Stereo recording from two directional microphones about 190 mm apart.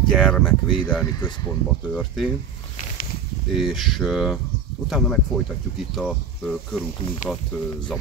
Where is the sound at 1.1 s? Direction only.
20° left (ahead or behind).